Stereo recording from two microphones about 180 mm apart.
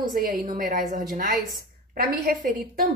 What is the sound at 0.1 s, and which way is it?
A woman's voice, 50° right (ahead or behind).